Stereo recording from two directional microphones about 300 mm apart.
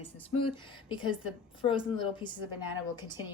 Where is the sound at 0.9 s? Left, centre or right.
Centre.